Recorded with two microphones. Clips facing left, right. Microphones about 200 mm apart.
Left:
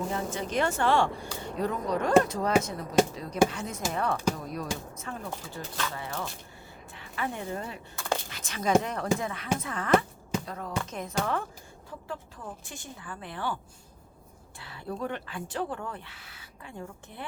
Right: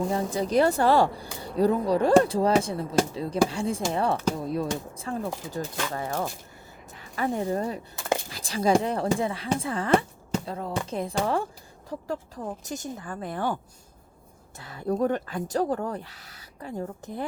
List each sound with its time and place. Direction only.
0.1 s a woman's voice: 35° right (ahead or behind)
11.9 s speech: 40° right (ahead or behind)
14.6 s speech: 45° right (ahead or behind)